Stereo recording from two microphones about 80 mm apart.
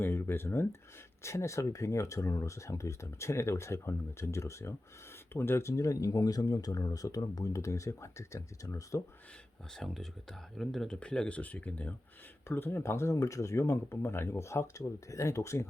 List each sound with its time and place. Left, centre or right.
0.0 s speech: left
9.7 s speech: centre
12.5 s speech: left